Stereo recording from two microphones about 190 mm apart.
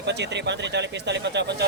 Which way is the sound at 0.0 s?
65° right (ahead or behind).